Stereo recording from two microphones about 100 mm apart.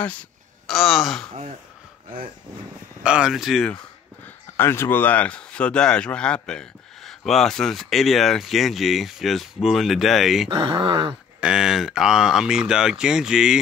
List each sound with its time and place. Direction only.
0.0 s speech: 15° left (ahead or behind)
0.7 s speech: centre (ahead or behind)
3.0 s speech: 10° right (ahead or behind)
4.6 s speech: 25° left (ahead or behind); by 10.5 s centre (ahead or behind)
10.8 s groan: 55° right (ahead or behind)
11.4 s speech: 5° right (ahead or behind)